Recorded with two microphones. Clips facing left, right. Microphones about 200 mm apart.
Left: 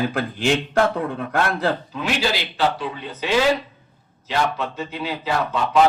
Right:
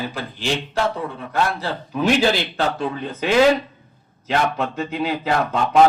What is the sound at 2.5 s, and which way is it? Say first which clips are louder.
A man's voice: even; 50° right (ahead or behind).